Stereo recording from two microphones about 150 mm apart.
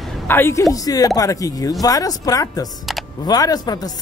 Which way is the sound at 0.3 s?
15° left (ahead or behind).